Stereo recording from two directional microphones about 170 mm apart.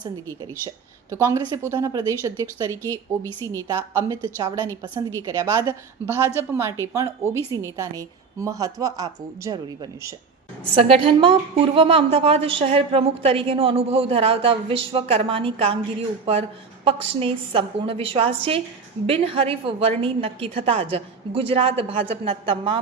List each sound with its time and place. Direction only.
1.1 s a woman's voice: 20° right (ahead or behind)
10.8 s a woman's voice: 35° right (ahead or behind)